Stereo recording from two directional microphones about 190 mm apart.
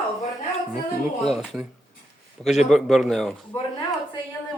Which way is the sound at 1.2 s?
Centre (ahead or behind).